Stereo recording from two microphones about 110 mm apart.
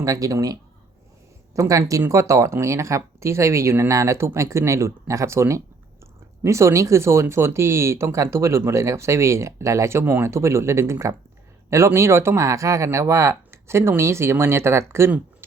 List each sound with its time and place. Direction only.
0.0 s speech: 30° right (ahead or behind)
1.5 s speech: 30° right (ahead or behind)